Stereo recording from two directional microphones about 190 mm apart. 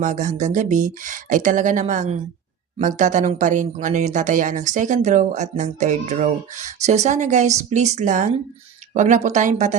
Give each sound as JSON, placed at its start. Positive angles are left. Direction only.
{"t": 0.0, "sound": "speech", "side_deg": -40}